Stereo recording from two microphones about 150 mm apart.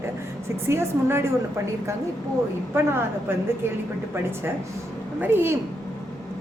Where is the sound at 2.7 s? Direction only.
15° right (ahead or behind).